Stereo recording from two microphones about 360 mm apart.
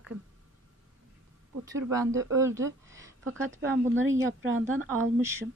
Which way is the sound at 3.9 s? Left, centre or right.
Right.